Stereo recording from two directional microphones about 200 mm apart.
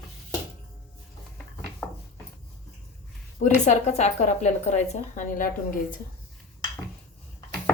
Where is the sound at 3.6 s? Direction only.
35° left (ahead or behind).